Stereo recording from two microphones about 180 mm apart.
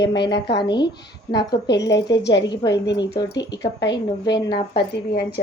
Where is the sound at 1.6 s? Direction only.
70° left (ahead or behind).